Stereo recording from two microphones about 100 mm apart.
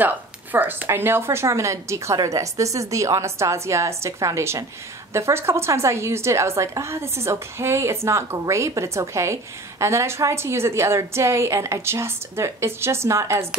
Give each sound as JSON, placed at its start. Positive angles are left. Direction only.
{"t": 0.0, "sound": "a woman's voice", "side_deg": -20}